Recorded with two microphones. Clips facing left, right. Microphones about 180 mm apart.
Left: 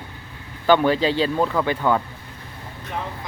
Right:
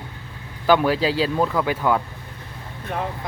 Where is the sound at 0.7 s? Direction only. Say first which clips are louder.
Left 1 dB; 5° right (ahead or behind).